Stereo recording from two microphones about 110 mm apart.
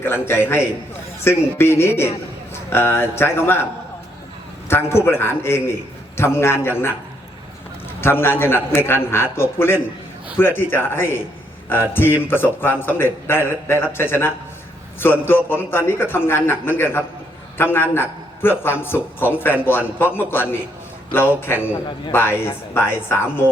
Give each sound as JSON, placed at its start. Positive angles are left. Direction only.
{"t": 0.0, "sound": "a man's voice", "side_deg": 20}
{"t": 4.7, "sound": "a man's voice", "side_deg": 25}
{"t": 8.0, "sound": "a man's voice", "side_deg": 20}